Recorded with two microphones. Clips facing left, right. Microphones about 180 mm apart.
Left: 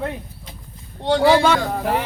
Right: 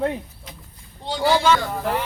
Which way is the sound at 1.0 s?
70° left (ahead or behind).